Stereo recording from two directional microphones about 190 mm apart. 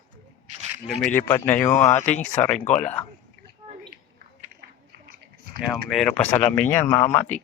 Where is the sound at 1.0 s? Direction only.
10° left (ahead or behind).